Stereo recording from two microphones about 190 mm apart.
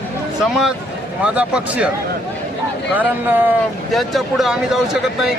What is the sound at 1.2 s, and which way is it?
Speech, 5° right (ahead or behind).